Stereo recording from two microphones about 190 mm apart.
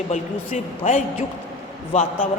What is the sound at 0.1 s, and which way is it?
A woman's voice, 40° left (ahead or behind).